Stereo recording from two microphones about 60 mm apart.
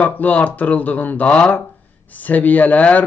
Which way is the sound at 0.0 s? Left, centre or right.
Left.